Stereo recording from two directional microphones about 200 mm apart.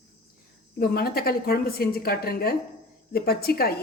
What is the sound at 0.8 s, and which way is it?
A woman's voice, 50° left (ahead or behind).